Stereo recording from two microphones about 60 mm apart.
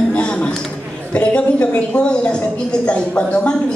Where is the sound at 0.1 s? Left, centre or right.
Centre.